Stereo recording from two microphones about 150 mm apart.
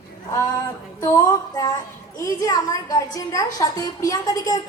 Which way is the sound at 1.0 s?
20° left (ahead or behind).